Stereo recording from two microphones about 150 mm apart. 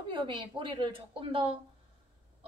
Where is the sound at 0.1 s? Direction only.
35° right (ahead or behind).